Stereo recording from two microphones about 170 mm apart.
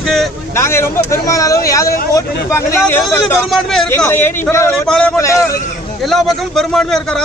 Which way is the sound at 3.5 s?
5° left (ahead or behind).